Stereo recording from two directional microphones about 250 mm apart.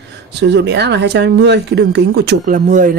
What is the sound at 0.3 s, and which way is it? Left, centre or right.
Speech, right.